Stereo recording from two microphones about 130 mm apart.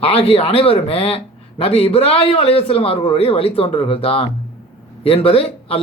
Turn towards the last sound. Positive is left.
turn(degrees=45)  # may be behind; listen again after turning